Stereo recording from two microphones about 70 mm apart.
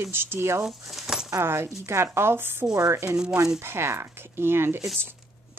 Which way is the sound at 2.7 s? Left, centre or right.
Right.